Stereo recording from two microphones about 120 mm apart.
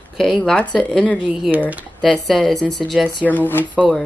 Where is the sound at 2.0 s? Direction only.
Centre (ahead or behind).